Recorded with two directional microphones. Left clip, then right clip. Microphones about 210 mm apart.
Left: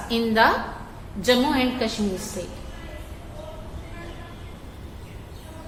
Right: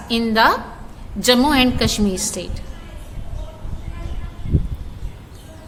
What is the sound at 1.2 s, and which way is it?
Speech, 30° right (ahead or behind).